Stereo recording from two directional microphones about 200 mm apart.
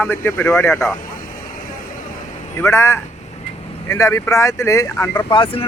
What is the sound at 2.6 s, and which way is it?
Speech, 15° left (ahead or behind).